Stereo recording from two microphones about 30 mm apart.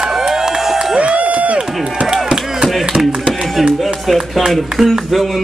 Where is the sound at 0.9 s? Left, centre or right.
Right.